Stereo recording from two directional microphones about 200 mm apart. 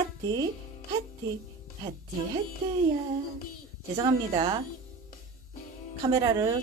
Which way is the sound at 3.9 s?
20° right (ahead or behind).